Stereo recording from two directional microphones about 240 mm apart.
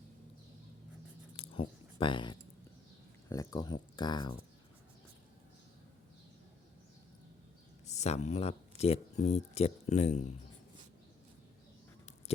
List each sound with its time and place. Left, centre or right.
1.4 s a sound: left
3.2 s speech: centre
7.9 s speech: left